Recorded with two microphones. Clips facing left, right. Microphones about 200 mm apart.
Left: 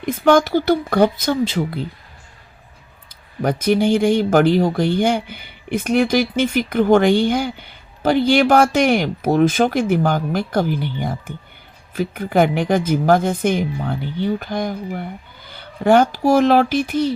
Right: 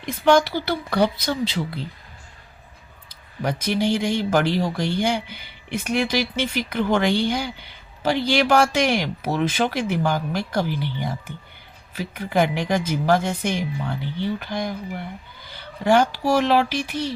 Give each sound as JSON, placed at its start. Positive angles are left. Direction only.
{"t": 0.0, "sound": "speech", "side_deg": 50}
{"t": 3.4, "sound": "speech", "side_deg": 50}